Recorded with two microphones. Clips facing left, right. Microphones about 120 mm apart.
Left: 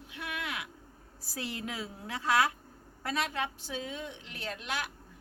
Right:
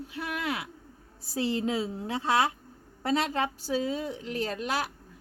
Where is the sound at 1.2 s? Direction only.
25° right (ahead or behind).